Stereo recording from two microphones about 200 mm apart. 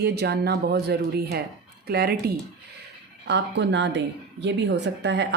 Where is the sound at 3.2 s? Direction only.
60° right (ahead or behind).